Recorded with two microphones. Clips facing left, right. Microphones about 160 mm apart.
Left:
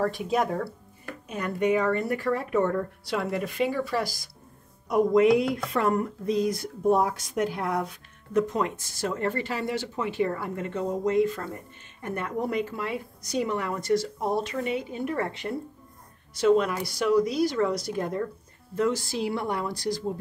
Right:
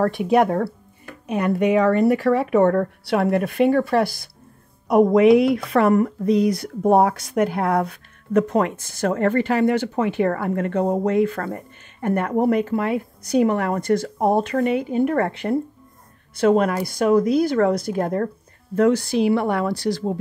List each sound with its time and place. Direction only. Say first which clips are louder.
0.0 s speech: right 8 dB; 65° right (ahead or behind)